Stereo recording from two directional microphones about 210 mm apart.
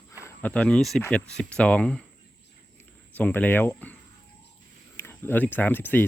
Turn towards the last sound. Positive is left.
turn(degrees=10)  # may be behind; listen again after turning